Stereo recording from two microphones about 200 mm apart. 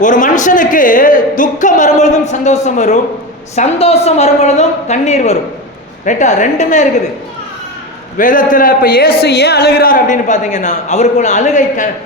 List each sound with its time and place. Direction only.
0.0 s a man's voice: 40° left (ahead or behind)
8.2 s a man's voice: 40° left (ahead or behind)